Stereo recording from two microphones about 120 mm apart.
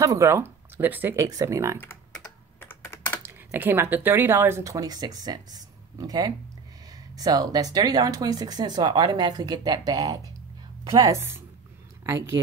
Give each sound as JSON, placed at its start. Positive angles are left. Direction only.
{"t": 0.0, "sound": "speech", "side_deg": -25}
{"t": 1.2, "sound": "speech", "side_deg": -25}
{"t": 2.6, "sound": "computer keyboard", "side_deg": 20}
{"t": 3.2, "sound": "a woman's voice", "side_deg": -20}
{"t": 11.1, "sound": "a woman's voice", "side_deg": -20}